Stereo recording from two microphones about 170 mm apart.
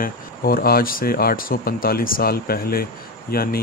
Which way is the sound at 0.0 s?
60° left (ahead or behind).